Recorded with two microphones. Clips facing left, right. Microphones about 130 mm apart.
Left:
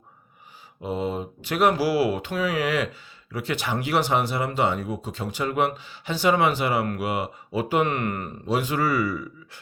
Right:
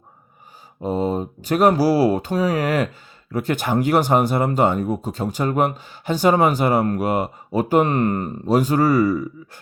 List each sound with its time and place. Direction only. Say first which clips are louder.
0.8 s speech: right 6 dB; 40° right (ahead or behind)